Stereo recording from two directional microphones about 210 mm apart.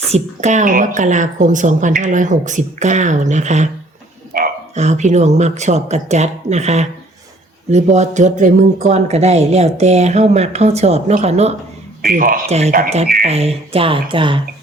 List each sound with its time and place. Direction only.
0.1 s speech: 35° right (ahead or behind)